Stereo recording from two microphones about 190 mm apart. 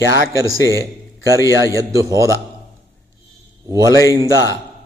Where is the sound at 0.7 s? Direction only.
15° right (ahead or behind).